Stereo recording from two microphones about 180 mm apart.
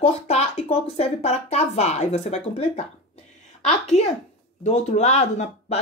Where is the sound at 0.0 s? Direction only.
35° left (ahead or behind).